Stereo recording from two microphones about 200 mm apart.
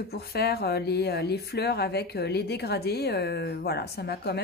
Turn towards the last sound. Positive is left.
turn(degrees=55)  # may be behind; listen again after turning